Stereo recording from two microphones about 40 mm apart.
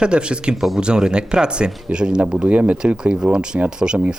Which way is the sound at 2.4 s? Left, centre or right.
Right.